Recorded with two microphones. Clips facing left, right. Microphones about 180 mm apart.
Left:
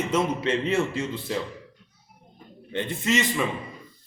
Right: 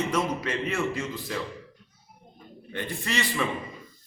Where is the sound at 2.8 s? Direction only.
20° left (ahead or behind).